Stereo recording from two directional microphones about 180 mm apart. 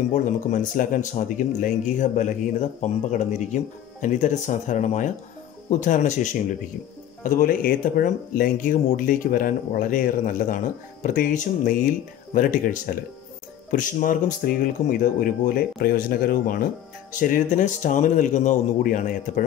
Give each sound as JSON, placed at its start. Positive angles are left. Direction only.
{"t": 0.1, "sound": "speech", "side_deg": 45}